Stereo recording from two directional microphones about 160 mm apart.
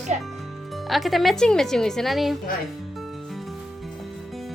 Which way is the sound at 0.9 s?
Centre (ahead or behind).